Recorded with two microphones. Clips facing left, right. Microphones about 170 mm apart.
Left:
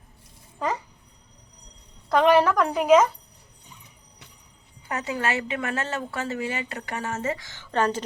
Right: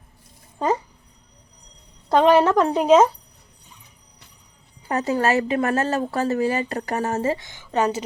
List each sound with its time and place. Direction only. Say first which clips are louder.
2.0 s speech: right 3 dB; 25° right (ahead or behind)
4.9 s speech: right 7 dB; 40° right (ahead or behind)
7.4 s a woman's voice: right 3 dB; 10° right (ahead or behind)